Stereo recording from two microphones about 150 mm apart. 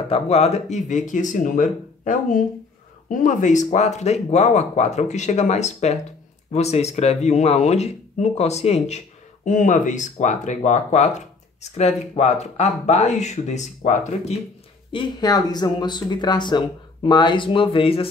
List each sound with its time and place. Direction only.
0.1 s speech: 45° left (ahead or behind)
14.9 s speech: 30° left (ahead or behind)